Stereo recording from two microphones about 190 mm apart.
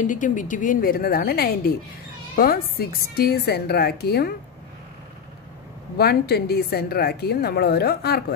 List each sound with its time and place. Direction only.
0.0 s a woman's voice: 40° left (ahead or behind)
5.9 s a woman's voice: 55° left (ahead or behind)